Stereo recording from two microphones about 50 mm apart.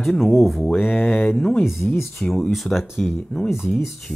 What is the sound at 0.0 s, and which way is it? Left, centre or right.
Speech, centre.